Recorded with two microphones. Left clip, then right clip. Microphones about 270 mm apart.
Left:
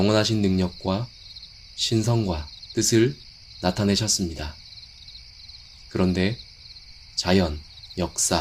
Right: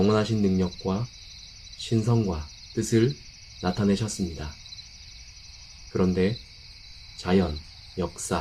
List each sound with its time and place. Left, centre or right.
0.0 s speech: left
5.9 s speech: left